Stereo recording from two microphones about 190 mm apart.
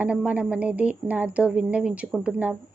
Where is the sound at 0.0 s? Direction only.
5° right (ahead or behind).